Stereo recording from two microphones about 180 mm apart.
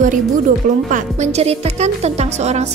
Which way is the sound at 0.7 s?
45° right (ahead or behind).